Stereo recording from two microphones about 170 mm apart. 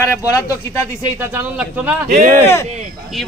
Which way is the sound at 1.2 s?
10° right (ahead or behind).